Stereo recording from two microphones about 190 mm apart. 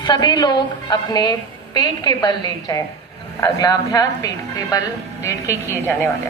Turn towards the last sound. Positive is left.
turn(degrees=15)  # may be behind; listen again after turning